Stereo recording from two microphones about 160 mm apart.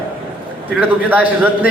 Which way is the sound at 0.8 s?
10° right (ahead or behind).